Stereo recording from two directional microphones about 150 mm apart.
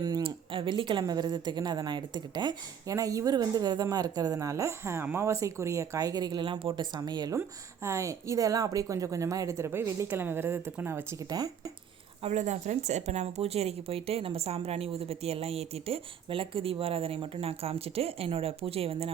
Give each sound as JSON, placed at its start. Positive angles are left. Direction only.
{"t": 0.0, "sound": "speech", "side_deg": -30}
{"t": 12.2, "sound": "a woman's voice", "side_deg": -50}